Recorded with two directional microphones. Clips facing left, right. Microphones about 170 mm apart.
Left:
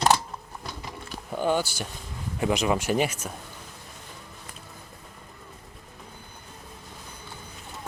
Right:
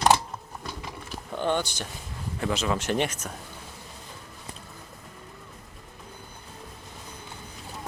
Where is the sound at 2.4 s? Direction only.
15° left (ahead or behind).